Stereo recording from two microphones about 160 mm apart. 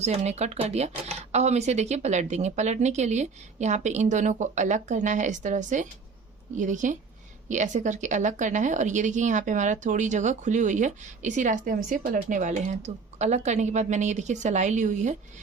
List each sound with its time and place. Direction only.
0.0 s a woman's voice: 45° right (ahead or behind)